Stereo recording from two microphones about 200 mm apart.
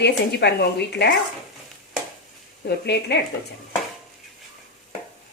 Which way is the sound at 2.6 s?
55° left (ahead or behind).